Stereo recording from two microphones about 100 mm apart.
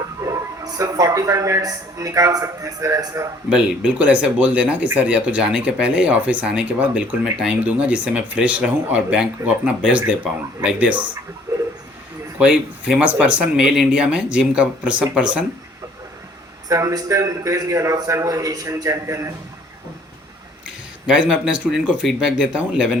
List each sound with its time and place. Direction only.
0.2 s speech: 35° right (ahead or behind)
3.5 s speech: 10° right (ahead or behind)
11.5 s train: 25° right (ahead or behind)
12.4 s speech: 15° right (ahead or behind)
16.6 s a man's voice: 35° right (ahead or behind)
21.1 s speech: 10° right (ahead or behind)